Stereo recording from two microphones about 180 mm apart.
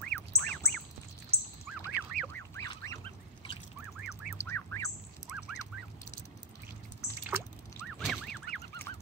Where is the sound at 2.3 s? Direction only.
15° left (ahead or behind).